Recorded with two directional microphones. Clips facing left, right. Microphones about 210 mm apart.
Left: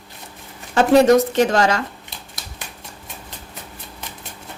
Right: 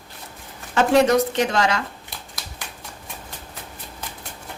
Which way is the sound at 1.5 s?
45° left (ahead or behind).